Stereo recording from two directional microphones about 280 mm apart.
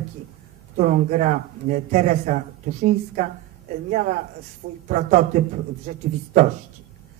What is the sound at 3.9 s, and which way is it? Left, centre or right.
Speech, right.